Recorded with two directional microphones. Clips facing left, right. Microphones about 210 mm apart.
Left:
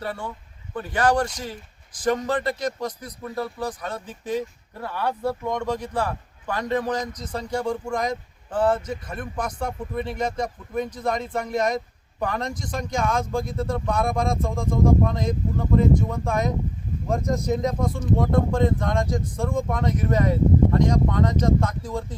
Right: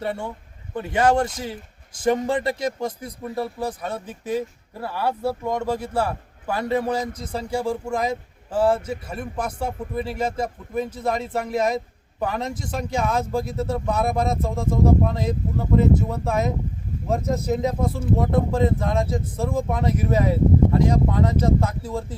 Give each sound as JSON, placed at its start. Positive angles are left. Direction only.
{"t": 0.0, "sound": "speech", "side_deg": -25}
{"t": 3.8, "sound": "speech", "side_deg": -5}